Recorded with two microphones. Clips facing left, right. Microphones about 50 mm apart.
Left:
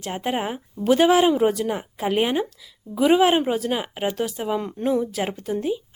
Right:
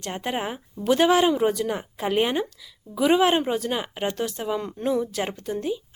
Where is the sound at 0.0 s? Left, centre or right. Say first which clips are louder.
Left 3 dB; centre.